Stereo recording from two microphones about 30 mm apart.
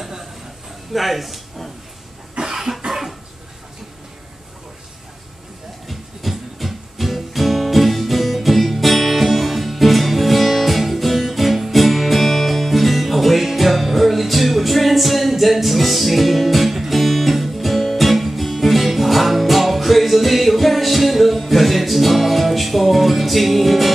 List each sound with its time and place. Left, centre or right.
0.9 s speech: centre
2.4 s cough: right
2.9 s cough: centre
5.9 s music: centre